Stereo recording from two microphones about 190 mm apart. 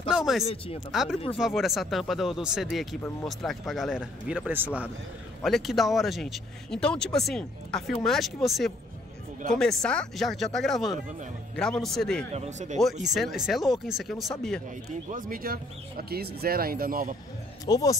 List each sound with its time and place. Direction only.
0.1 s a sound: centre (ahead or behind)
0.9 s speech: centre (ahead or behind)
12.4 s speech: 40° right (ahead or behind)
13.0 s speech: centre (ahead or behind)
15.0 s speech: 45° right (ahead or behind)
17.6 s speech: 20° left (ahead or behind)